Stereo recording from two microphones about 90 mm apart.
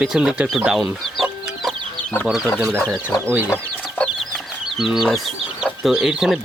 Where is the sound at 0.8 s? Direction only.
Centre (ahead or behind).